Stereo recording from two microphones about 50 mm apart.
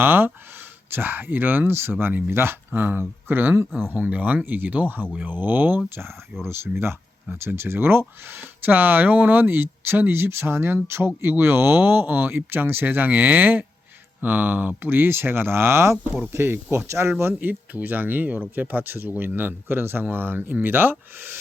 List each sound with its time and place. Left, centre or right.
0.0 s speech: right
1.7 s speech: right
3.9 s speech: right
6.4 s speech: right
17.5 s speech: right